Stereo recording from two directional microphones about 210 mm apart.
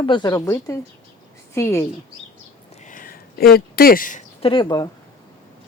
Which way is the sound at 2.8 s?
40° left (ahead or behind).